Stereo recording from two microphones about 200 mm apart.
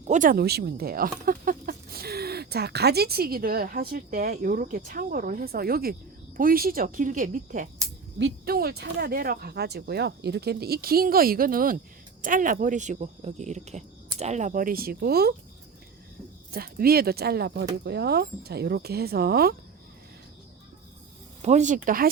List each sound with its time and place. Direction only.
0.0 s speech: 40° right (ahead or behind)
16.5 s speech: 50° right (ahead or behind)
21.4 s speech: 35° right (ahead or behind)